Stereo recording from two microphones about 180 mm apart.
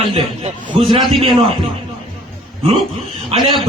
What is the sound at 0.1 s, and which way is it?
A man's voice, 35° right (ahead or behind).